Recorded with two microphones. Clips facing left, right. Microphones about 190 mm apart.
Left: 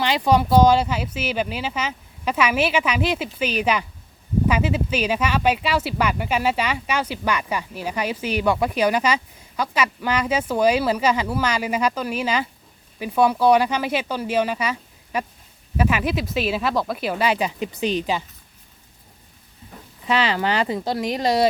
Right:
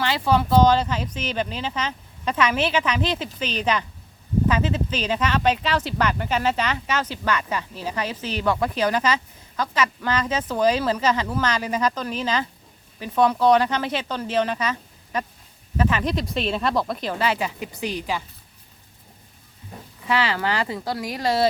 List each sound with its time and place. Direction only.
0.0 s speech: 15° left (ahead or behind)
20.1 s speech: 20° left (ahead or behind)